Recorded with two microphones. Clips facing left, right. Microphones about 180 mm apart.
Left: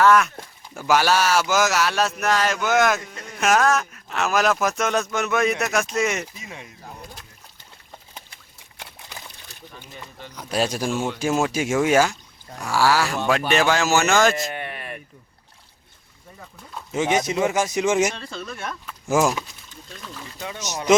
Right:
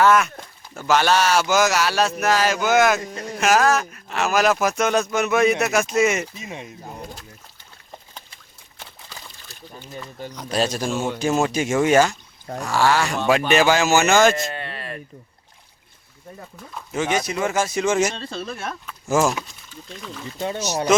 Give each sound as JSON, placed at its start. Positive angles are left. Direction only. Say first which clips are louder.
{"t": 0.0, "sound": "a sound", "louder": "even", "side_deg": 0}
{"t": 0.8, "sound": "speech", "louder": "right 1 dB", "side_deg": 10}
{"t": 3.0, "sound": "speech", "louder": "right 7 dB", "side_deg": -35}
{"t": 3.4, "sound": "speech", "louder": "right 1 dB", "side_deg": 0}
{"t": 6.3, "sound": "speech", "louder": "right 5 dB", "side_deg": -20}
{"t": 8.8, "sound": "pour", "louder": "left 1 dB", "side_deg": 15}
{"t": 10.3, "sound": "speech", "louder": "right 1 dB", "side_deg": 10}
{"t": 14.5, "sound": "a sound", "louder": "even", "side_deg": 15}
{"t": 16.9, "sound": "speech", "louder": "left 1 dB", "side_deg": 20}
{"t": 18.1, "sound": "speech", "louder": "right 3 dB", "side_deg": -25}
{"t": 19.2, "sound": "speech", "louder": "even", "side_deg": 0}
{"t": 20.4, "sound": "speech", "louder": "right 7 dB", "side_deg": -30}